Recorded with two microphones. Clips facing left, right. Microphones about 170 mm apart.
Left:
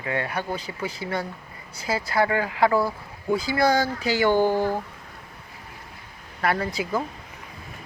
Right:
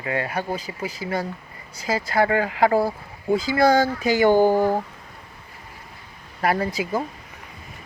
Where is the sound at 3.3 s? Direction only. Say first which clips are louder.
Right 3 dB; 20° right (ahead or behind).